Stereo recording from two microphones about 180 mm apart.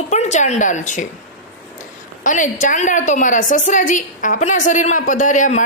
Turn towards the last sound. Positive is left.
turn(degrees=45)  # may be behind; listen again after turning